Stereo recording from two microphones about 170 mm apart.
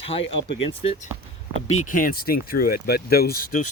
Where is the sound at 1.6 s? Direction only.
45° left (ahead or behind).